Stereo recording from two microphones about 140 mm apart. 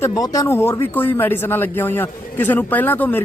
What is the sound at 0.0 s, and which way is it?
A man's voice, 25° left (ahead or behind).